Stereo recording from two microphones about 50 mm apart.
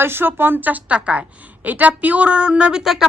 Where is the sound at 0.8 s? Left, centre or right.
Right.